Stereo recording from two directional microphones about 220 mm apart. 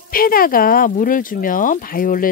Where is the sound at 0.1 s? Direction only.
40° left (ahead or behind).